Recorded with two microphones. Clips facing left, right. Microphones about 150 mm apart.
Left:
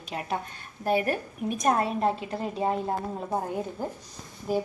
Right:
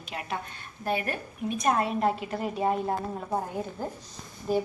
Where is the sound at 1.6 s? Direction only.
40° left (ahead or behind).